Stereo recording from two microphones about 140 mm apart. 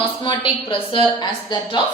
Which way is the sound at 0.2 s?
35° left (ahead or behind).